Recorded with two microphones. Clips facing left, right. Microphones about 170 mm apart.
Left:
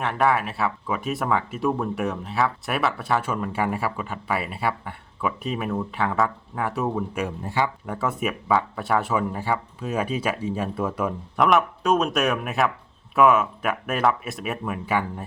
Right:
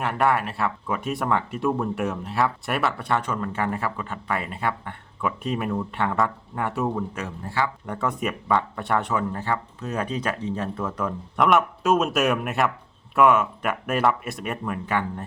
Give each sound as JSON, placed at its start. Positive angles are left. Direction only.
{"t": 0.0, "sound": "speech", "side_deg": 0}
{"t": 7.2, "sound": "speech", "side_deg": 15}
{"t": 7.9, "sound": "speech", "side_deg": 5}